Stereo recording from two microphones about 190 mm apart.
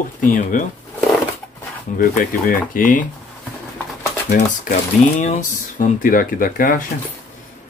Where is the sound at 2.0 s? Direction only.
45° left (ahead or behind).